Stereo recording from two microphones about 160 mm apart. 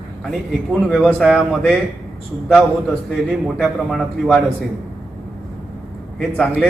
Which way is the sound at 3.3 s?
Centre (ahead or behind).